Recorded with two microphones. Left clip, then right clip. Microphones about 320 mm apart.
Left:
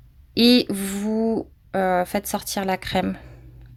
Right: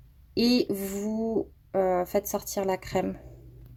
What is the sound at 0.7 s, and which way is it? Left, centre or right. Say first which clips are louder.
Speech: left 6 dB; left.